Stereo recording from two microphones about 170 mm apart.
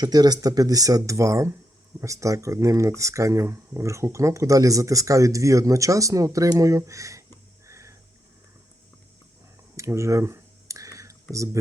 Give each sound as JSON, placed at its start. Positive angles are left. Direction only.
{"t": 0.0, "sound": "speech", "side_deg": -25}
{"t": 7.7, "sound": "music", "side_deg": -15}
{"t": 9.7, "sound": "a sound", "side_deg": -15}